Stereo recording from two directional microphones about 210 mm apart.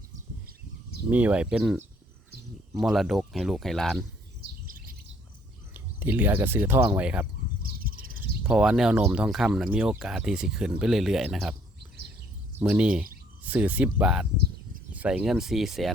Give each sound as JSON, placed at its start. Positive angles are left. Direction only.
{"t": 1.1, "sound": "speech", "side_deg": -5}
{"t": 4.6, "sound": "chirp", "side_deg": -40}
{"t": 5.7, "sound": "speech", "side_deg": -10}
{"t": 7.6, "sound": "bird", "side_deg": -45}
{"t": 8.4, "sound": "speech", "side_deg": -5}
{"t": 12.5, "sound": "speech", "side_deg": -5}